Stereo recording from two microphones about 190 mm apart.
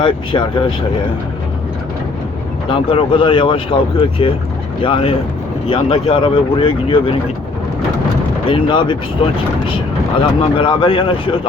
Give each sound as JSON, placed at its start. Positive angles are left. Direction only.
{"t": 0.0, "sound": "speech", "side_deg": 25}
{"t": 2.6, "sound": "speech", "side_deg": 30}
{"t": 8.4, "sound": "speech", "side_deg": 25}